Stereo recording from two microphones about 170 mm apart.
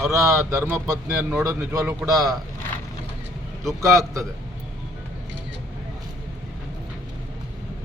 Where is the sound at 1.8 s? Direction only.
5° right (ahead or behind).